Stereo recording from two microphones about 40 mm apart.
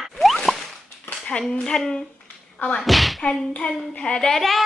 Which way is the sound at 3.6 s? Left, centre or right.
Left.